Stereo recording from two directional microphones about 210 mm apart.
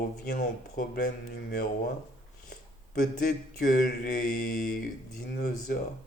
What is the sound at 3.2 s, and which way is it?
Mantra, 45° left (ahead or behind).